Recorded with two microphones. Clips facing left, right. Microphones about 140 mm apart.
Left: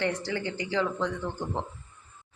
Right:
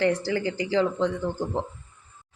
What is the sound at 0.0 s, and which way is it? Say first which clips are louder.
A woman's voice: right 6 dB; 30° right (ahead or behind).